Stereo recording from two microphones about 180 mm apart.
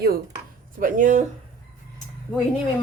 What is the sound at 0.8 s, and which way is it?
Speech, 45° right (ahead or behind).